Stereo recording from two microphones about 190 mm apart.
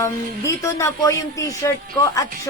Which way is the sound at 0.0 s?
15° left (ahead or behind).